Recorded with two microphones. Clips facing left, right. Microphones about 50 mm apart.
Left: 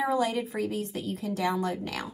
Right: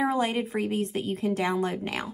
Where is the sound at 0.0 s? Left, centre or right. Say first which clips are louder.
Right 1 dB; right.